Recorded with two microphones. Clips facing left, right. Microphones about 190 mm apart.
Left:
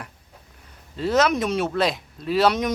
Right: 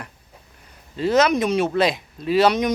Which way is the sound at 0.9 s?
Centre (ahead or behind).